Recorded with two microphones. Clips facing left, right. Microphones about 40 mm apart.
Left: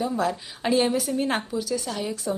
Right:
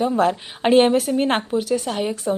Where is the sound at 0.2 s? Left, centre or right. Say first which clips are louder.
Right 7 dB; right.